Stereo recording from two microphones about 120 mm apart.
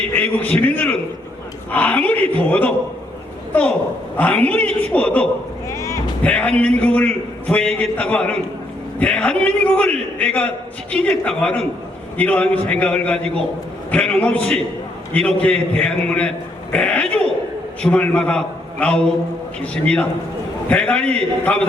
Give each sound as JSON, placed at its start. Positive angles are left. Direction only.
{"t": 0.1, "sound": "a man's voice", "side_deg": 15}
{"t": 5.7, "sound": "music", "side_deg": 25}
{"t": 6.2, "sound": "a man's voice", "side_deg": 10}